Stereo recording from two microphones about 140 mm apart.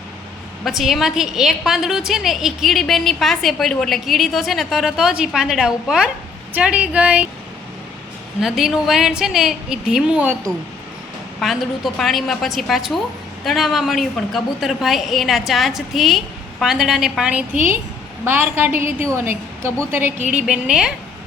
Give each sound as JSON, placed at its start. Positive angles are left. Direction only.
{"t": 0.6, "sound": "a woman's voice", "side_deg": 0}
{"t": 8.4, "sound": "a woman's voice", "side_deg": 0}
{"t": 11.3, "sound": "a woman's voice", "side_deg": 0}